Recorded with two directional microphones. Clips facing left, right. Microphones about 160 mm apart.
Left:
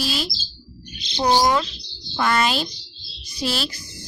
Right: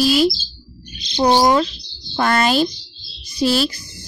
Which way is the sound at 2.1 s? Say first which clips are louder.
Right 4 dB; 45° right (ahead or behind).